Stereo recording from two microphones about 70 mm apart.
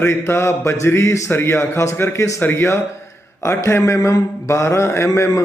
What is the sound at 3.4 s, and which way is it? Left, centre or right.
Speech, left.